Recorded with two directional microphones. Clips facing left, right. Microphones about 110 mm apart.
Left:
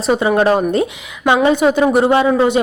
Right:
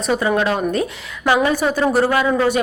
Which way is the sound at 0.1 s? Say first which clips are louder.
Left 5 dB; 25° left (ahead or behind).